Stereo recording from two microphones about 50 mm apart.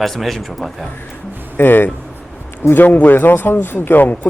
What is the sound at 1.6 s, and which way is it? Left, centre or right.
Speech, left.